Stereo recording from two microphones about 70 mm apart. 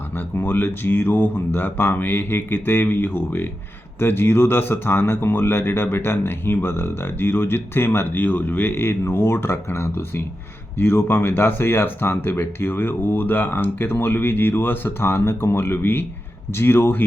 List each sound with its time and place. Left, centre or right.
0.3 s speech: left